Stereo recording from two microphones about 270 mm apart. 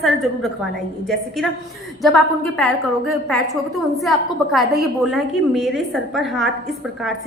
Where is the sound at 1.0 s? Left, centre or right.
Centre.